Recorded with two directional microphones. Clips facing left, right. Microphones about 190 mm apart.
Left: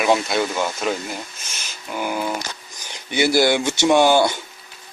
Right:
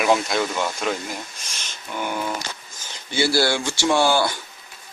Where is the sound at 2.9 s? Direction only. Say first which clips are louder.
Left 3 dB; 20° left (ahead or behind).